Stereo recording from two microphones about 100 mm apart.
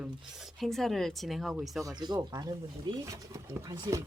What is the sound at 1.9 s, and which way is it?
Speech, 45° right (ahead or behind).